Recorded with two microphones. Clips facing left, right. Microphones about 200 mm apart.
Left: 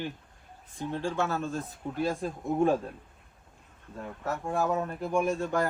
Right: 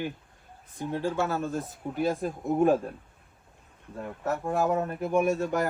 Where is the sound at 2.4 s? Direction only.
5° right (ahead or behind).